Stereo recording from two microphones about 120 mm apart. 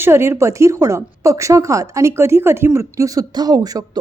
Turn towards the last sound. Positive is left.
turn(degrees=-30)  # may be behind; listen again after turning